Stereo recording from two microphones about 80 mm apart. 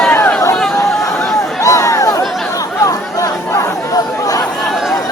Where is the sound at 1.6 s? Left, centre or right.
Left.